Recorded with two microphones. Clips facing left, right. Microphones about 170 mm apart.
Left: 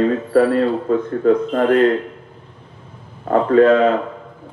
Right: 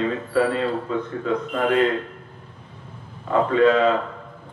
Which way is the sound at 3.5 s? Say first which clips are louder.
Left 6 dB; 45° left (ahead or behind).